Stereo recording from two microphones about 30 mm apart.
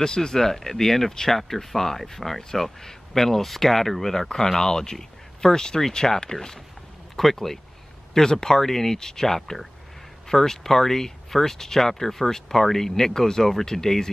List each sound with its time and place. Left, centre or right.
0.0 s speech: left
7.2 s speech: centre